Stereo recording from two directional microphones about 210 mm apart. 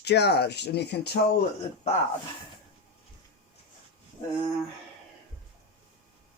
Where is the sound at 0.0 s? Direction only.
50° left (ahead or behind).